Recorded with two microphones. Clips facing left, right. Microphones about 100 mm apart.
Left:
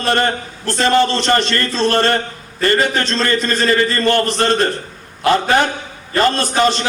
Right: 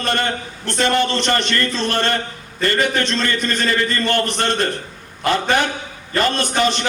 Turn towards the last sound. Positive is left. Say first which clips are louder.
# left 3 dB
turn(degrees=35)  # may be behind; listen again after turning